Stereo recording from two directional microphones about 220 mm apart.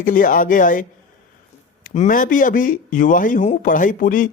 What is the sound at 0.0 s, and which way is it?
Speech, 40° left (ahead or behind).